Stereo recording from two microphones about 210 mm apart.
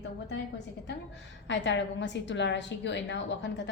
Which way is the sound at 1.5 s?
60° left (ahead or behind).